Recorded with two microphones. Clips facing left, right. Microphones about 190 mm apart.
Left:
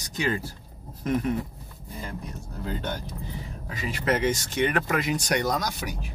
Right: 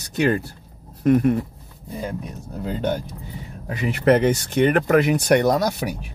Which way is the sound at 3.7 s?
65° right (ahead or behind).